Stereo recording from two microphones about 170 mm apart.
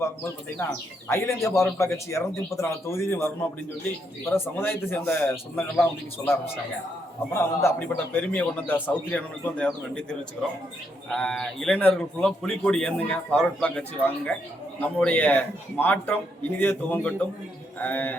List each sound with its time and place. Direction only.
0.6 s a man's voice: 15° left (ahead or behind)
7.3 s a man's voice: 10° left (ahead or behind)